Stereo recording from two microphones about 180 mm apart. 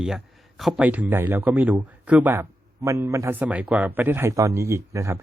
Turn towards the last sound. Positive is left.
turn(degrees=-15)  # may be behind; listen again after turning